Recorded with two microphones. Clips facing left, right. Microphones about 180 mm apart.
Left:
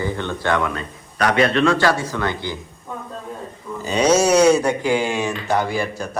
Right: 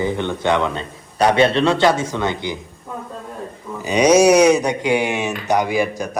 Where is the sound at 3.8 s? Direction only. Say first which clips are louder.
Right 4 dB; 15° right (ahead or behind).